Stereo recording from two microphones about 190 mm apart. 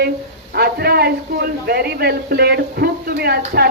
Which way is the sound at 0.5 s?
55° right (ahead or behind).